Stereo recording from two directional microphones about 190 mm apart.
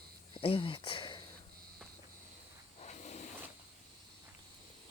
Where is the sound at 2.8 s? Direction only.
35° left (ahead or behind).